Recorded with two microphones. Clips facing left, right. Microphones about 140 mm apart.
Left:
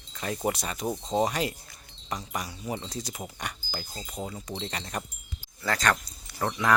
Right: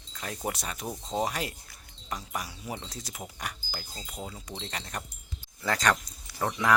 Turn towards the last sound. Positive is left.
turn(degrees=-5)  # may be behind; listen again after turning